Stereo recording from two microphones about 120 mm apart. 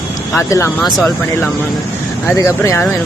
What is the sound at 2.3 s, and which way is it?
Speech, 25° left (ahead or behind).